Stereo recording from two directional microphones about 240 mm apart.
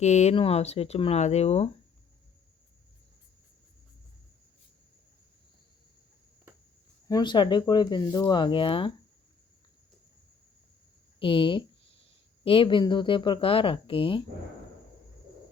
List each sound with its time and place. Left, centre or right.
0.0 s speech: left
7.1 s speech: centre
11.2 s speech: left